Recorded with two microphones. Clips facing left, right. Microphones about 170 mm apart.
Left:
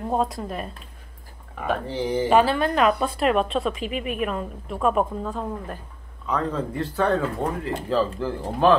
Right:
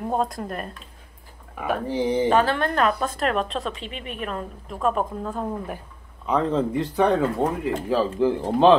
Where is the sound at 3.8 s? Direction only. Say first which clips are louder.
Left 7 dB; 30° right (ahead or behind).